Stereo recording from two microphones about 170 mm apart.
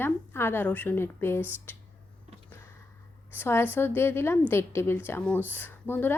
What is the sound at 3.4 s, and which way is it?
Speech, 15° left (ahead or behind).